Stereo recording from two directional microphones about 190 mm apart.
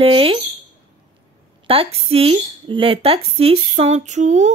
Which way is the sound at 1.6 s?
30° right (ahead or behind).